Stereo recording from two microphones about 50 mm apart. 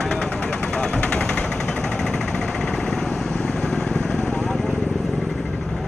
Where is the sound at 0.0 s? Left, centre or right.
Centre.